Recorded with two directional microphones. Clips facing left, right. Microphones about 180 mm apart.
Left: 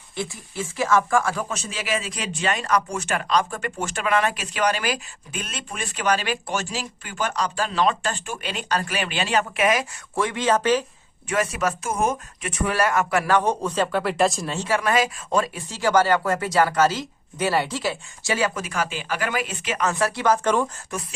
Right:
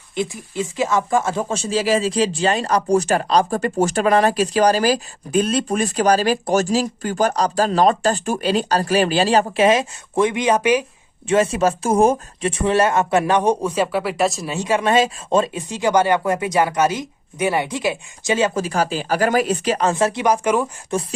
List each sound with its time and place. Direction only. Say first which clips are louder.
0.2 s speech: right 6 dB; 20° right (ahead or behind)
11.3 s speech: right 7 dB; 25° right (ahead or behind); by 20.7 s 10° right (ahead or behind)
20.9 s speech: right 12 dB; 25° right (ahead or behind)